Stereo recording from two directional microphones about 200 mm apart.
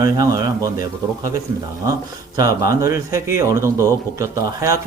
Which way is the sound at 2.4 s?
15° right (ahead or behind).